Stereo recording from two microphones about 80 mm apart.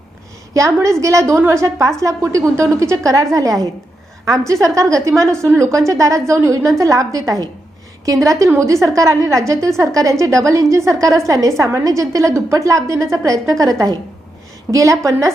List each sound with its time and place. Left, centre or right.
0.5 s a woman's voice: right